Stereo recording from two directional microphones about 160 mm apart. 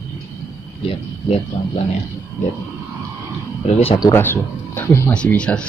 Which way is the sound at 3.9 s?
25° left (ahead or behind).